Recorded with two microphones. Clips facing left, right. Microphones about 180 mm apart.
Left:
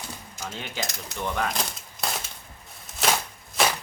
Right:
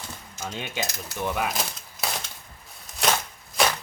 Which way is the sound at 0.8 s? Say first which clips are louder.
Right 2 dB; 10° right (ahead or behind).